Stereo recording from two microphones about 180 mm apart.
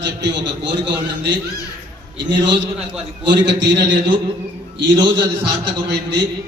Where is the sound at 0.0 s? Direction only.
80° right.